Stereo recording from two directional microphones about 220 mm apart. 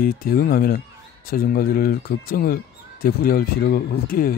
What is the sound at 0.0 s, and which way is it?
Speech, 40° left (ahead or behind).